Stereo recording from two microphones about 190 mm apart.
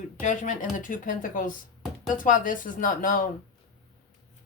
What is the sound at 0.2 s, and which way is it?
Speech, 45° left (ahead or behind).